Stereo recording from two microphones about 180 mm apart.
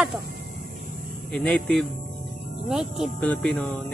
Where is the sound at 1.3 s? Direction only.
5° left (ahead or behind).